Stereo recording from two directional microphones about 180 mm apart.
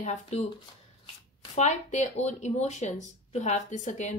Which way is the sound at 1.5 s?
40° left (ahead or behind).